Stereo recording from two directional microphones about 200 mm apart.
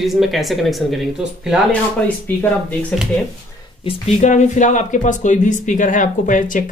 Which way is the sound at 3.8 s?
35° left (ahead or behind).